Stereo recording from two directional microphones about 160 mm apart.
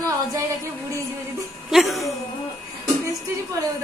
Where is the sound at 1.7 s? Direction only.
Centre (ahead or behind).